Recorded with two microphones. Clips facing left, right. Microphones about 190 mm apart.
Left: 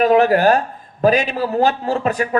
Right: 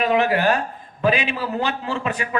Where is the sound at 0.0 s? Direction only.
40° left (ahead or behind).